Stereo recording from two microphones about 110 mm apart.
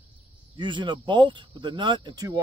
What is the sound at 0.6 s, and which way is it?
Speech, 45° right (ahead or behind).